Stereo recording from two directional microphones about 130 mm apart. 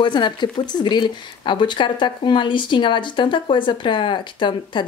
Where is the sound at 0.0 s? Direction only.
35° left (ahead or behind).